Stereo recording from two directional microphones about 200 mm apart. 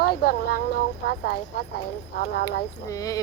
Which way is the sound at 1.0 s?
50° left (ahead or behind).